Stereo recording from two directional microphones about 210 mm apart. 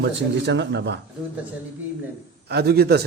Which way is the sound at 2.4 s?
50° right (ahead or behind).